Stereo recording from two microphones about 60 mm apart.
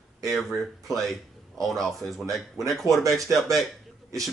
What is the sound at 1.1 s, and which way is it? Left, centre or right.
Speech, centre.